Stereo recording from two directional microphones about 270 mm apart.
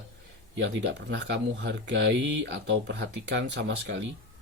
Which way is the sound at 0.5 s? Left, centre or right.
Right.